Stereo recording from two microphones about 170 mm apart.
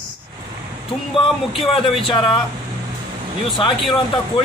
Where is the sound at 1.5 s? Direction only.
Centre (ahead or behind).